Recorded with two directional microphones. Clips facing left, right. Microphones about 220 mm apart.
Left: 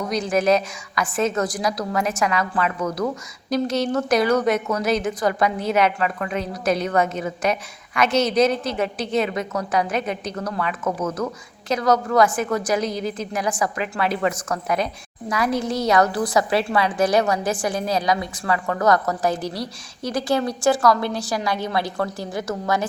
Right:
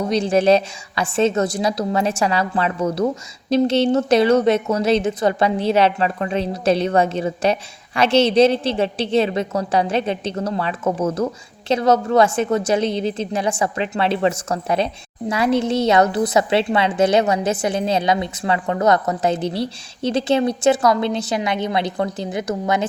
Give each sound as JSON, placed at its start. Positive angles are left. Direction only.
{"t": 0.0, "sound": "a woman's voice", "side_deg": -30}